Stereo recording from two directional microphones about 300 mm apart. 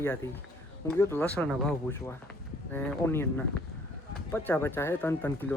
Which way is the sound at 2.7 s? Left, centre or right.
Centre.